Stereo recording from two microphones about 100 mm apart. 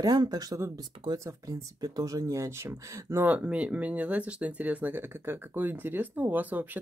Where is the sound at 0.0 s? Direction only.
40° right (ahead or behind); by 3.3 s 25° right (ahead or behind).